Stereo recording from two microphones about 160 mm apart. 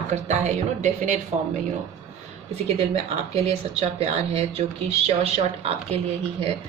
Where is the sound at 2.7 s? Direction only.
40° right (ahead or behind).